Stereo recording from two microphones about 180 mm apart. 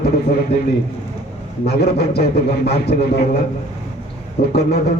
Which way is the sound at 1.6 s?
65° left (ahead or behind).